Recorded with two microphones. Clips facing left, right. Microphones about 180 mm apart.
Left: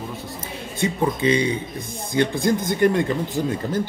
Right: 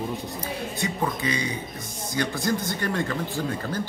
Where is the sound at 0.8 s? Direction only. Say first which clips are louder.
Left 8 dB; 25° left (ahead or behind).